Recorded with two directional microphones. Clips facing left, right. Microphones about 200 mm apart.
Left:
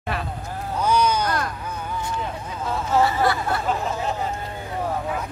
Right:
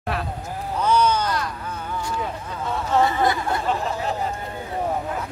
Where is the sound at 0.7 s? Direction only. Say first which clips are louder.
Right 1 dB; 10° left (ahead or behind).